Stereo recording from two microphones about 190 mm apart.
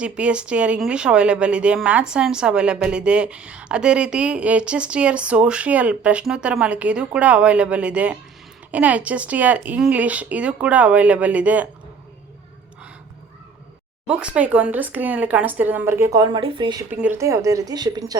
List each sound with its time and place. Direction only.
0.0 s speech: 5° right (ahead or behind)
14.1 s speech: 5° right (ahead or behind); by 16.8 s 25° right (ahead or behind)
16.9 s speech: 10° right (ahead or behind)